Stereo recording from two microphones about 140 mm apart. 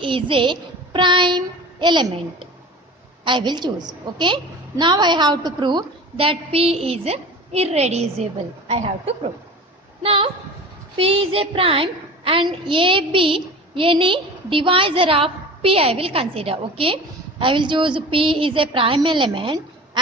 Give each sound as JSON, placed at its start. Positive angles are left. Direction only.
{"t": 0.0, "sound": "a woman's voice", "side_deg": -35}